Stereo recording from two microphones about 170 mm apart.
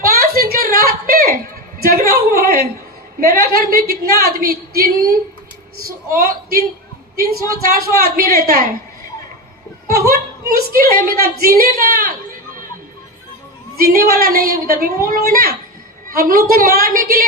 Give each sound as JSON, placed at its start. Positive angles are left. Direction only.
{"t": 0.0, "sound": "a sound", "side_deg": -60}
{"t": 3.2, "sound": "a woman's voice", "side_deg": -60}
{"t": 7.8, "sound": "a woman's voice", "side_deg": -60}
{"t": 9.9, "sound": "a woman's voice", "side_deg": -60}
{"t": 13.7, "sound": "a woman's voice", "side_deg": -60}